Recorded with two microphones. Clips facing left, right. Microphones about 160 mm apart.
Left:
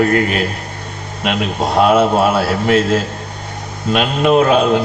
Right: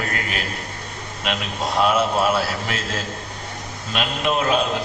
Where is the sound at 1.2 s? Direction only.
60° left (ahead or behind).